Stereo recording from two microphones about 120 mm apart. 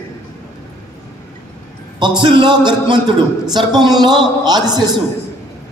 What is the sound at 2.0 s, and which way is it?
A man's voice, 40° right (ahead or behind).